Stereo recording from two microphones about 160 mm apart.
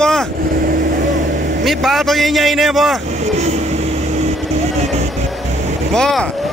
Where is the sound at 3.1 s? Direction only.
45° right (ahead or behind).